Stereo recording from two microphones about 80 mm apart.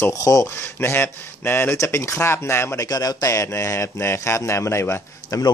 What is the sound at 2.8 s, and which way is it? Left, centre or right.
Speech, left.